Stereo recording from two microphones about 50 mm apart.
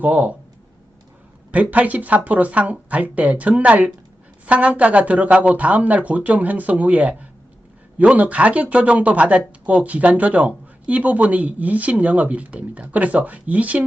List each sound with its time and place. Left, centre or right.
0.0 s speech: right
1.5 s speech: right